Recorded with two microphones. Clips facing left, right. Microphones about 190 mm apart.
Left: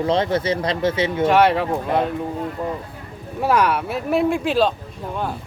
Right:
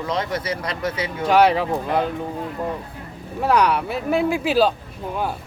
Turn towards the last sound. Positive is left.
turn(degrees=-5)  # may be behind; listen again after turning